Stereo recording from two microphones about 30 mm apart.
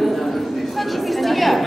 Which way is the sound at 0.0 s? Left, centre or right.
Centre.